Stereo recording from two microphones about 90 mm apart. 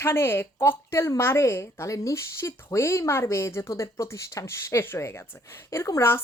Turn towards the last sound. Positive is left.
turn(degrees=30)  # may be behind; listen again after turning